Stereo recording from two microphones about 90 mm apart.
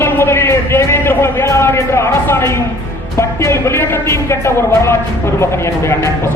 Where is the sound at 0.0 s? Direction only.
30° left (ahead or behind).